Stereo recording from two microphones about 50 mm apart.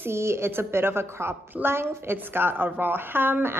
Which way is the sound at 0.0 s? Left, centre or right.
Right.